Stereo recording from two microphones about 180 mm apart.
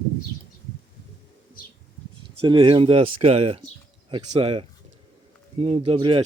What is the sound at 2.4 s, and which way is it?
Speech, 30° right (ahead or behind).